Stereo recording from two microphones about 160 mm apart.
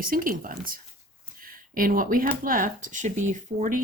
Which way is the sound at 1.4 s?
60° right (ahead or behind).